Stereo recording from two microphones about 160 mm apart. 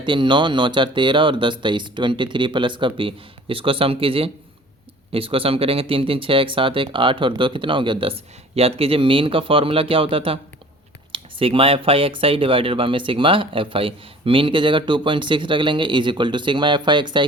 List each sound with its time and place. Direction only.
0.0 s speech: 30° right (ahead or behind)